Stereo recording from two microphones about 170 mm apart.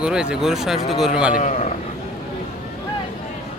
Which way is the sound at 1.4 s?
45° left (ahead or behind).